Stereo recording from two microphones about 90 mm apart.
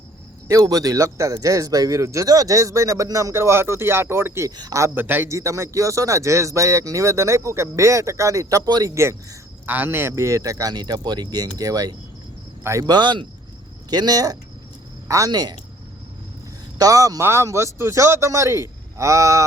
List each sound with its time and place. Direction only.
0.4 s speech: 40° right (ahead or behind)
4.4 s speech: 45° right (ahead or behind)
4.8 s a man's voice: 25° right (ahead or behind)
5.4 s speech: 35° right (ahead or behind)
9.6 s speech: 20° right (ahead or behind); by 15.3 s 35° right (ahead or behind)
15.3 s speech: 50° right (ahead or behind)
16.7 s speech: 40° right (ahead or behind)